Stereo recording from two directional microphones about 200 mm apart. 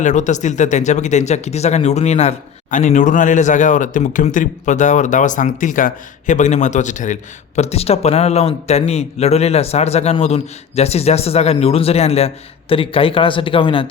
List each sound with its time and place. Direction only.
0.0 s speech: 40° left (ahead or behind)